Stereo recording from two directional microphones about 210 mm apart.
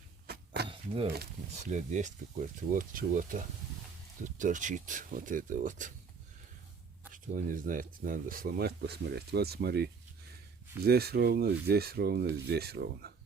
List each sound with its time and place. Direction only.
0.3 s a sound: 50° right (ahead or behind)
1.5 s speech: 35° right (ahead or behind)
7.1 s speech: 40° right (ahead or behind)